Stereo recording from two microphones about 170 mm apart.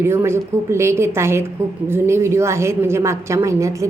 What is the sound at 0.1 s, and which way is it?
A woman's voice, 15° right (ahead or behind).